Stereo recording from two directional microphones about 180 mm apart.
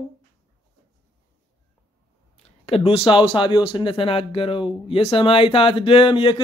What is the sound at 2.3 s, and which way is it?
Speech, 35° left (ahead or behind).